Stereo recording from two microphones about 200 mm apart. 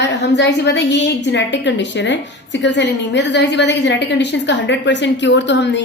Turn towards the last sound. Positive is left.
turn(degrees=60)  # may be behind; listen again after turning